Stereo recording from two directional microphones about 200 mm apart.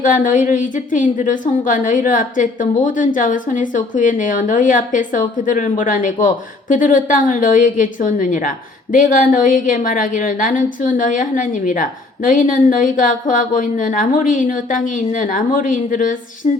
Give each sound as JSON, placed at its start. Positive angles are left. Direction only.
{"t": 0.0, "sound": "a woman's voice", "side_deg": 40}